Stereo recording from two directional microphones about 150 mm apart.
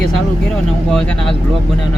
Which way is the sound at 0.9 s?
5° left (ahead or behind).